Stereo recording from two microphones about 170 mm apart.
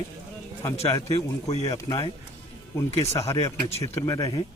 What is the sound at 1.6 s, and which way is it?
Speech, 20° left (ahead or behind).